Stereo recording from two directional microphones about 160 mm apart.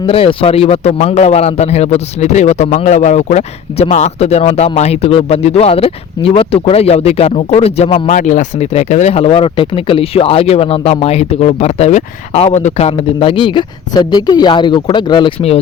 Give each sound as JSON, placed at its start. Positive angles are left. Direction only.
{"t": 0.1, "sound": "a man's voice", "side_deg": 35}